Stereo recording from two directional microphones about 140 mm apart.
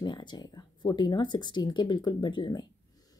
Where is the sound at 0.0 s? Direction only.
35° left (ahead or behind).